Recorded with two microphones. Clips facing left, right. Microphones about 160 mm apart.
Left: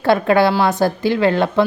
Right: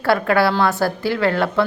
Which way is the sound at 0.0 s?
20° left (ahead or behind).